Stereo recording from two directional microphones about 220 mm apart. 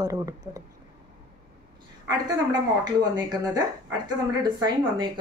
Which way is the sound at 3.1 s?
20° right (ahead or behind).